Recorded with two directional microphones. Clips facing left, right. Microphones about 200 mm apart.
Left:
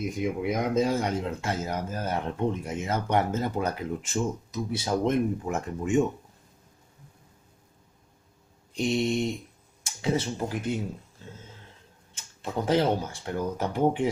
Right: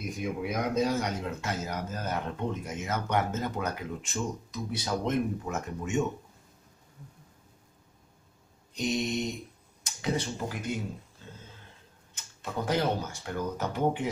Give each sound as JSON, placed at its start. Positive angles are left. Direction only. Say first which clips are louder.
{"t": 0.2, "sound": "speech", "louder": "left 3 dB", "side_deg": 25}
{"t": 8.7, "sound": "speech", "louder": "left 4 dB", "side_deg": 30}
{"t": 12.6, "sound": "speech", "louder": "left 5 dB", "side_deg": 25}